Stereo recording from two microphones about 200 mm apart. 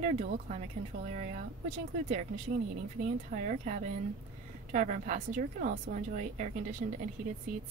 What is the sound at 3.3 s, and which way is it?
A woman's voice, 40° right (ahead or behind).